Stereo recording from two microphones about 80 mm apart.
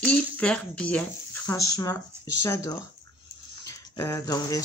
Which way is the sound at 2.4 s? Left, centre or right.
Left.